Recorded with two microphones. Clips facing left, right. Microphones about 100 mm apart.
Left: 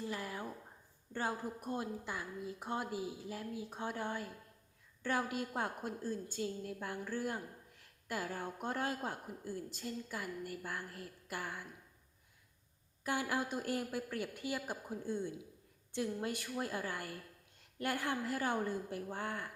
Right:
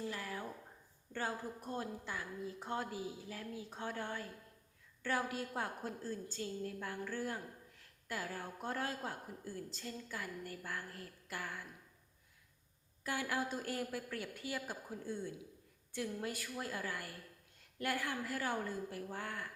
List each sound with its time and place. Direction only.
0.1 s a sound: 20° left (ahead or behind)
1.1 s a woman's voice: 15° left (ahead or behind)
13.1 s a woman's voice: 25° left (ahead or behind)